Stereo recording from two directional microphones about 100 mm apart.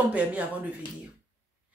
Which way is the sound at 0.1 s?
15° right (ahead or behind).